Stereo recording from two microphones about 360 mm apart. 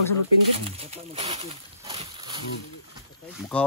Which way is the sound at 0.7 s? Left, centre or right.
Centre.